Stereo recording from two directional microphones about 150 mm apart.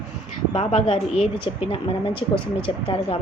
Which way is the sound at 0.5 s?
40° left (ahead or behind).